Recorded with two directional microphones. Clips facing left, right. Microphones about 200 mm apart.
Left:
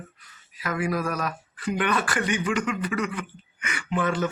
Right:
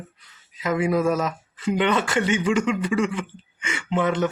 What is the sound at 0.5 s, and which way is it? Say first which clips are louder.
Speech: right 5 dB; 20° right (ahead or behind).